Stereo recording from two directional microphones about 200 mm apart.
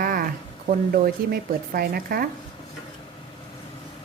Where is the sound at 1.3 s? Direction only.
50° right (ahead or behind).